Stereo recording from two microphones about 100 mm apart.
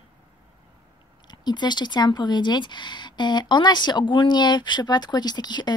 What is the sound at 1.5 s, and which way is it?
Speech, 45° left (ahead or behind).